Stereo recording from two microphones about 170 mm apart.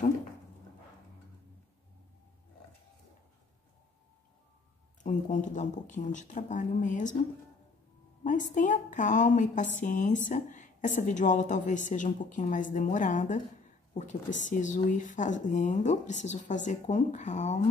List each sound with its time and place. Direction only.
5.0 s speech: 50° left (ahead or behind)
8.2 s speech: 45° left (ahead or behind)